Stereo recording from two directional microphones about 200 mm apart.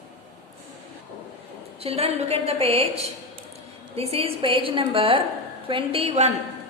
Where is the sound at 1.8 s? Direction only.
30° right (ahead or behind).